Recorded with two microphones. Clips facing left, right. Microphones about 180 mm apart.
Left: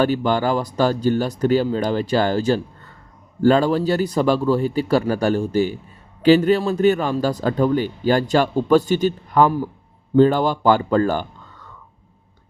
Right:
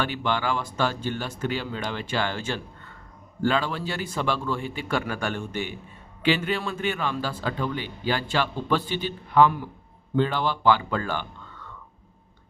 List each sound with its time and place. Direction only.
0.0 s a man's voice: 40° left (ahead or behind)